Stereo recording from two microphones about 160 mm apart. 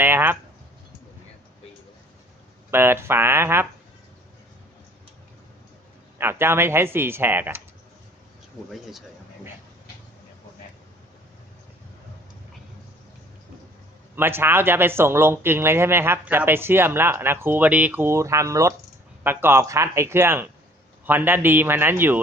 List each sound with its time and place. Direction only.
0.0 s a sound: 15° right (ahead or behind)
2.6 s speech: 15° right (ahead or behind)
6.1 s speech: 15° right (ahead or behind)
8.7 s speech: centre (ahead or behind)
14.2 s speech: 15° right (ahead or behind)